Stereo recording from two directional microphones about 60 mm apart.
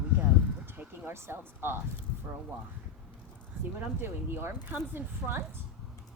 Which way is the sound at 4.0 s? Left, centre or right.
Right.